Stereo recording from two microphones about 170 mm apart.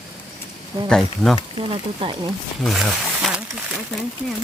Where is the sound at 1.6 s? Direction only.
30° right (ahead or behind).